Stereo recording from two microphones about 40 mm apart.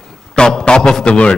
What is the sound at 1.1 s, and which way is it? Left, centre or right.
Speech, left.